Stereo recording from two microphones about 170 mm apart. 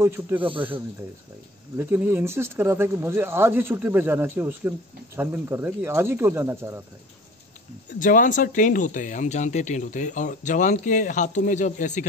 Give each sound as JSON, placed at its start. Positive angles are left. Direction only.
{"t": 0.0, "sound": "speech", "side_deg": -10}
{"t": 0.4, "sound": "speech", "side_deg": -30}
{"t": 1.8, "sound": "speech", "side_deg": -15}
{"t": 8.0, "sound": "speech", "side_deg": 50}